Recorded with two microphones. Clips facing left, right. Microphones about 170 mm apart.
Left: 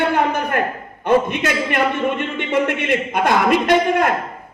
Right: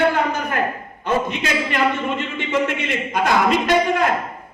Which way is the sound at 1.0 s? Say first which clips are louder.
Left 5 dB; 55° left (ahead or behind).